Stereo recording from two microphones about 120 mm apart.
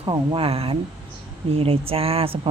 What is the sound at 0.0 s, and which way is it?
Speech, 45° right (ahead or behind).